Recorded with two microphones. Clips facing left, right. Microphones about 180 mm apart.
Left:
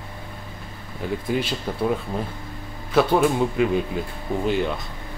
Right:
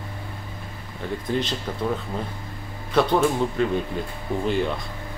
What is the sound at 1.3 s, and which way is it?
Speech, 10° left (ahead or behind).